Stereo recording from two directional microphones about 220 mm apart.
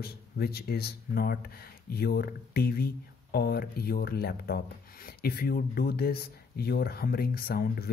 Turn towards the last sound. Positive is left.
turn(degrees=45)  # may be behind; listen again after turning